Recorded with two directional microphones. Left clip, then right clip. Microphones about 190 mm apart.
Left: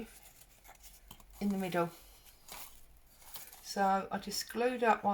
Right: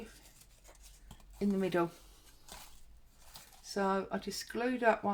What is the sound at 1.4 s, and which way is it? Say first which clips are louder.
Speech: right 2 dB; 45° right (ahead or behind).